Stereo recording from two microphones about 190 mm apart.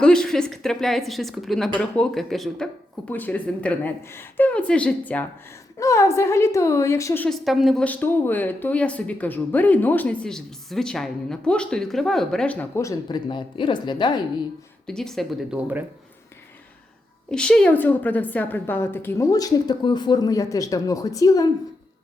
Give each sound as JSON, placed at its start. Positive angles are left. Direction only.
{"t": 0.0, "sound": "a woman's voice", "side_deg": 5}
{"t": 7.4, "sound": "speech", "side_deg": 0}
{"t": 14.8, "sound": "a woman's voice", "side_deg": 0}
{"t": 17.3, "sound": "speech", "side_deg": 5}